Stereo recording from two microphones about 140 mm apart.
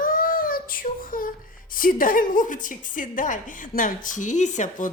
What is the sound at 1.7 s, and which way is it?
A woman's voice, 85° left.